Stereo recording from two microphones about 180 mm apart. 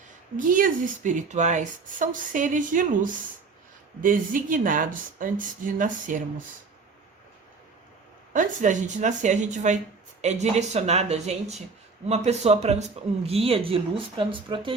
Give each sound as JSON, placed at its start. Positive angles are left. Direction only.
{"t": 0.3, "sound": "speech", "side_deg": -50}
{"t": 8.3, "sound": "speech", "side_deg": -45}